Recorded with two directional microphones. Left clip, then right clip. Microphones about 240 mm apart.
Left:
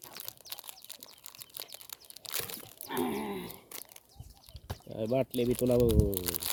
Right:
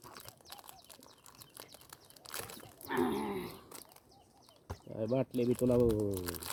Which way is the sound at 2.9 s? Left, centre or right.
Centre.